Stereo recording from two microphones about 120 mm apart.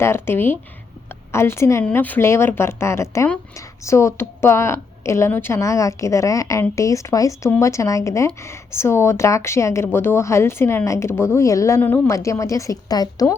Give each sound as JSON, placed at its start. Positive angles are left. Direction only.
{"t": 0.0, "sound": "a woman's voice", "side_deg": 20}
{"t": 12.1, "sound": "a woman's voice", "side_deg": 25}